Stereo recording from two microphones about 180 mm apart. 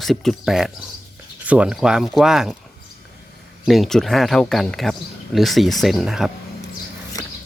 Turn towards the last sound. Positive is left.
turn(degrees=20)  # may be behind; listen again after turning